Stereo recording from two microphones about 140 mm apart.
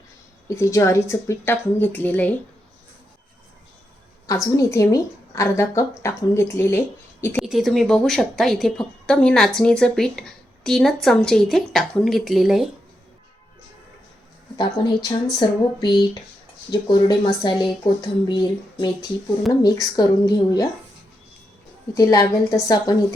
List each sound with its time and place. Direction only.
0.4 s a woman's voice: 20° left (ahead or behind)
4.3 s a woman's voice: 25° left (ahead or behind)
7.4 s a woman's voice: centre (ahead or behind)
14.6 s a woman's voice: 35° left (ahead or behind)
21.9 s a woman's voice: 25° left (ahead or behind)